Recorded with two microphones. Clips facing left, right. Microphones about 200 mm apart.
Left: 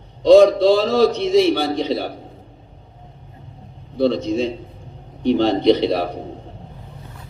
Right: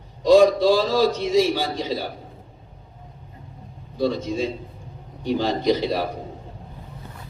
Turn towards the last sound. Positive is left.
turn(degrees=65)  # may be behind; listen again after turning